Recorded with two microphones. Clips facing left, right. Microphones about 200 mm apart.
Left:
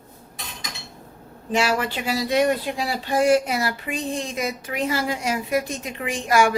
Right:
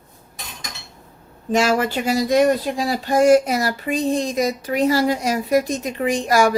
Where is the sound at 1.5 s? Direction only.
45° right (ahead or behind).